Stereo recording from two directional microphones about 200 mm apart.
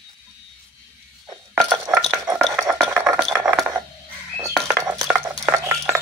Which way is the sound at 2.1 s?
15° right (ahead or behind).